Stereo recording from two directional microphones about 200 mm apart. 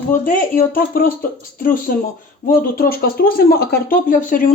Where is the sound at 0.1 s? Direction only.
40° left (ahead or behind).